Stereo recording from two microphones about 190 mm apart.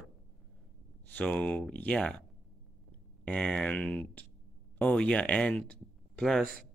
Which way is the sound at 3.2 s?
5° left (ahead or behind).